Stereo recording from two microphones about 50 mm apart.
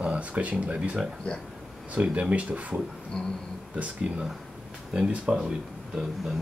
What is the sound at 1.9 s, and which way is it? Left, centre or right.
Speech, right.